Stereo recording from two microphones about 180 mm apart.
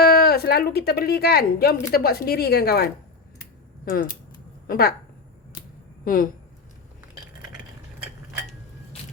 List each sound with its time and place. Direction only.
0.0 s speech: 55° left (ahead or behind)
4.6 s speech: 55° left (ahead or behind)
6.1 s a woman's voice: 50° left (ahead or behind)